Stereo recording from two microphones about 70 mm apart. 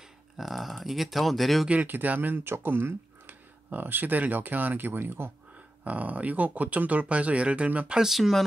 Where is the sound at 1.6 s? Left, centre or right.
Right.